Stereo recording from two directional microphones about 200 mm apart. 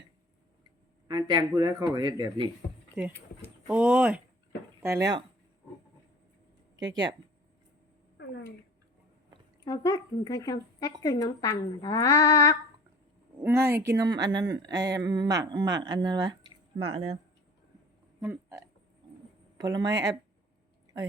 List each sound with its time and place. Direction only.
1.0 s speech: 20° right (ahead or behind)
3.7 s speech: 5° right (ahead or behind)
9.6 s a woman's voice: 20° left (ahead or behind)
13.4 s speech: 10° right (ahead or behind)
16.9 s speech: 90° right
18.2 s a sound: 15° right (ahead or behind)
19.5 s speech: 20° right (ahead or behind)